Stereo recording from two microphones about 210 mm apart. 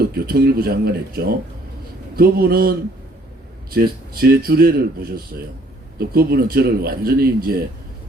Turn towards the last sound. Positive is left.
turn(degrees=-45)  # may be behind; listen again after turning